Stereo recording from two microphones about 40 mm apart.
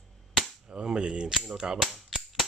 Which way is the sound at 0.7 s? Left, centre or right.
Right.